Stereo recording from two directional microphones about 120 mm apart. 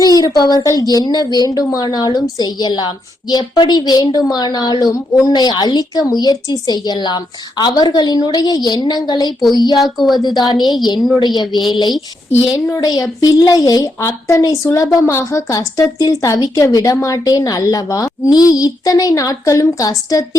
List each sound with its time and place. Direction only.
0.0 s a woman's voice: 30° left (ahead or behind)
9.4 s a woman's voice: centre (ahead or behind)
10.2 s a woman's voice: 35° left (ahead or behind)
10.6 s a woman's voice: centre (ahead or behind)
12.3 s a woman's voice: 15° right (ahead or behind)
12.5 s a woman's voice: 25° left (ahead or behind)